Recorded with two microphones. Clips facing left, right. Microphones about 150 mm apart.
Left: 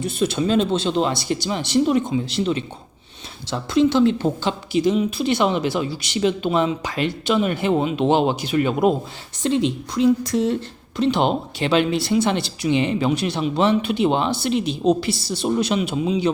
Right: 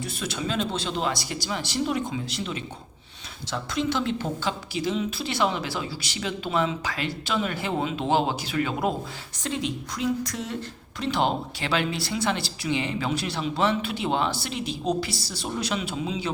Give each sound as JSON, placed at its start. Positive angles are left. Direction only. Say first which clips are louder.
{"t": 0.0, "sound": "a woman's voice", "louder": "left 10 dB", "side_deg": 25}